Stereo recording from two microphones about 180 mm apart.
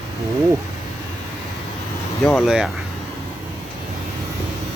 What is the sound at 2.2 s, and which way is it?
Speech, centre (ahead or behind).